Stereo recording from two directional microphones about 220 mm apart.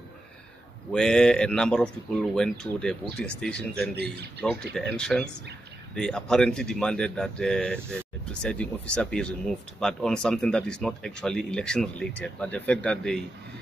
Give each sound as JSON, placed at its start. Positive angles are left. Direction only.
{"t": 0.9, "sound": "speech", "side_deg": 5}
{"t": 3.9, "sound": "speech", "side_deg": -50}
{"t": 4.7, "sound": "speech", "side_deg": 5}